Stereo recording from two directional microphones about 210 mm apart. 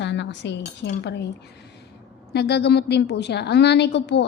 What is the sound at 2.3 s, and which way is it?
A woman's voice, 50° left (ahead or behind).